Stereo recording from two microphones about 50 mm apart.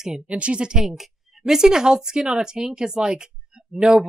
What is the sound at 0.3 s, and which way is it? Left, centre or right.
Speech, right.